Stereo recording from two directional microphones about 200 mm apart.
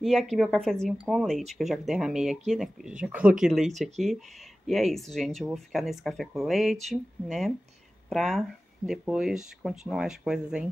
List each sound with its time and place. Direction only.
0.0 s speech: centre (ahead or behind)